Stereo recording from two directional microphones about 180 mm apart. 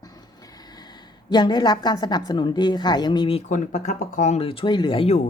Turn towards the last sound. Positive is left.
turn(degrees=35)  # may be behind; listen again after turning